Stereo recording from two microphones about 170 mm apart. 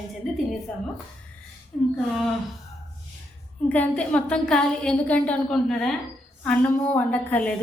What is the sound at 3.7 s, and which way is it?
A woman's voice, 10° left (ahead or behind).